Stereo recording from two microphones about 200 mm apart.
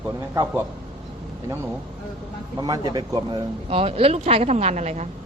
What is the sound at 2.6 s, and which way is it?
Speech, 20° right (ahead or behind).